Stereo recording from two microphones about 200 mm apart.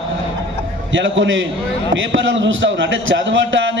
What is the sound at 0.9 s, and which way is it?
A man's voice, 70° right (ahead or behind).